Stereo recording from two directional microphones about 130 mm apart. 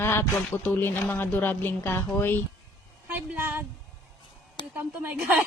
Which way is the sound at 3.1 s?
15° right (ahead or behind).